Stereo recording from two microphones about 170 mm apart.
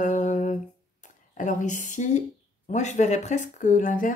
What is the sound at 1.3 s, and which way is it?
Speech, 50° left (ahead or behind).